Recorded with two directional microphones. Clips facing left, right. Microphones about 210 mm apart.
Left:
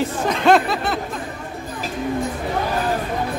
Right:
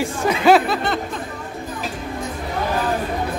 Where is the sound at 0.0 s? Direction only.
10° right (ahead or behind).